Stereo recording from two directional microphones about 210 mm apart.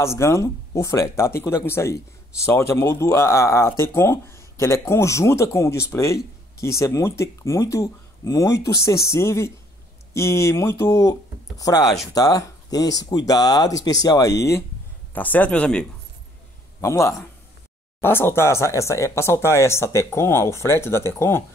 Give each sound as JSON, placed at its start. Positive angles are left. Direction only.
{"t": 0.0, "sound": "speech", "side_deg": 15}
{"t": 15.1, "sound": "speech", "side_deg": 10}